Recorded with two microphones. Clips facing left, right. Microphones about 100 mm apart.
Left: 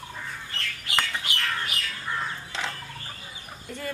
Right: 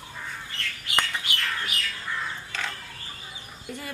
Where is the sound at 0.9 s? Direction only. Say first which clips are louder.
Even; centre (ahead or behind).